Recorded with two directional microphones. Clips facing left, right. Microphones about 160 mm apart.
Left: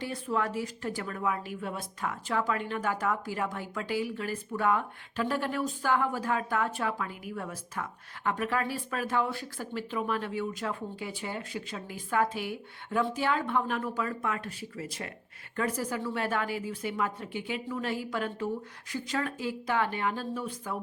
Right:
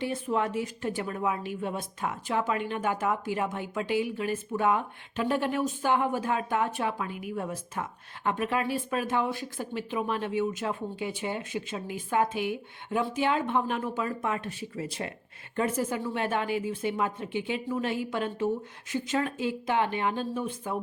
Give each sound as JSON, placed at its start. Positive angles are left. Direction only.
{"t": 0.0, "sound": "speech", "side_deg": -20}